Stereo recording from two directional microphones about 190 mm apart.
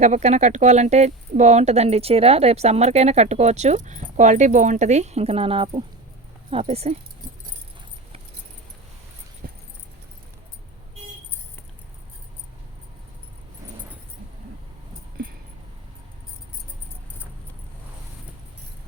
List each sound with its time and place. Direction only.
0.0 s speech: 35° right (ahead or behind)
9.4 s keys jangling: 50° right (ahead or behind)